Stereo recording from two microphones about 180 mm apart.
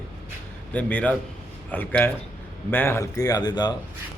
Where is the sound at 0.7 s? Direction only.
10° left (ahead or behind).